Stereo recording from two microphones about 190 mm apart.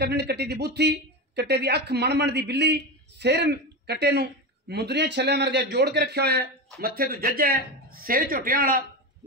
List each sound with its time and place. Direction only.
0.0 s a man's voice: 55° right (ahead or behind)